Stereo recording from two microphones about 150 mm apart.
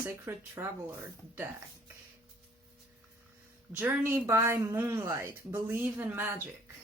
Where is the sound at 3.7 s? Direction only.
15° right (ahead or behind).